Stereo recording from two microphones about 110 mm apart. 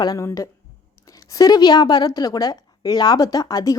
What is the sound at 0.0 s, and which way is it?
A woman's voice, 35° left (ahead or behind).